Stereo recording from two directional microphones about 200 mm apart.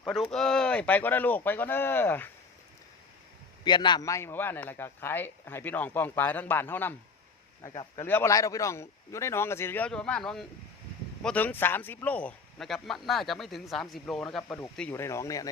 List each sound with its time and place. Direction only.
0.0 s a man's voice: 5° left (ahead or behind)
3.6 s a man's voice: 20° left (ahead or behind)